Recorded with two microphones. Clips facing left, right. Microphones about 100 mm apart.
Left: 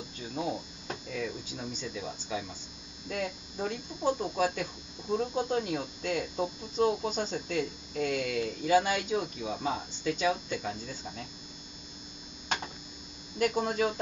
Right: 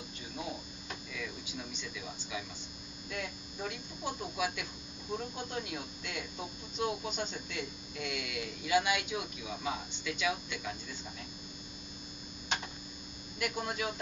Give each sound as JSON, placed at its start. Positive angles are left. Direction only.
{"t": 0.8, "sound": "a sound", "side_deg": 35}
{"t": 3.1, "sound": "speech", "side_deg": 40}
{"t": 13.4, "sound": "speech", "side_deg": 40}